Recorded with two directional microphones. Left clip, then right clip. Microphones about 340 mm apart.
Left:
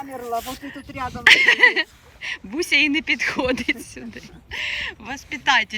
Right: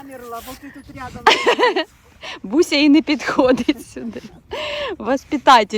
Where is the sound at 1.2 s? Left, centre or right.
Centre.